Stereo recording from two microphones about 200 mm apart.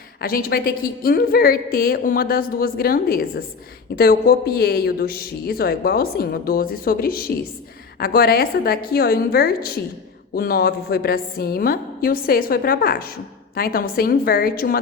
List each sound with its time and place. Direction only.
0.2 s a woman's voice: 50° left (ahead or behind)